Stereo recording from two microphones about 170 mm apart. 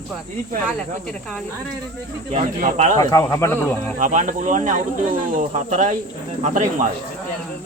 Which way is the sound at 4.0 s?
50° right (ahead or behind).